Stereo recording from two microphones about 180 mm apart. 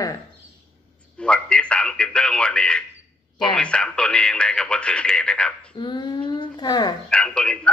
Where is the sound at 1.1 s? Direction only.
5° left (ahead or behind).